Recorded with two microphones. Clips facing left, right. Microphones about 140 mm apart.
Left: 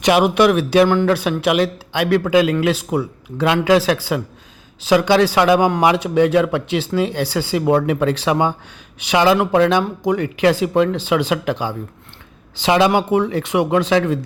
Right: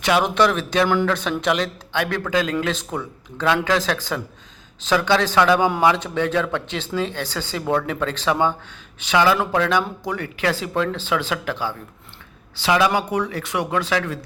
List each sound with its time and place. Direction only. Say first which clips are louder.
0.0 s speech: left 5 dB; 15° left (ahead or behind)